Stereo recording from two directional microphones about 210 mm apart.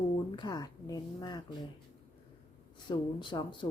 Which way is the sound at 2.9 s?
20° left (ahead or behind).